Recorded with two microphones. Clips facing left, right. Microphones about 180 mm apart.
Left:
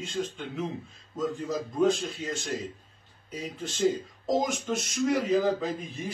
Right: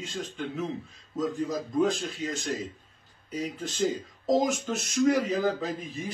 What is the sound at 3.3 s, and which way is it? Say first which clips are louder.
Speech: right 3 dB; centre (ahead or behind).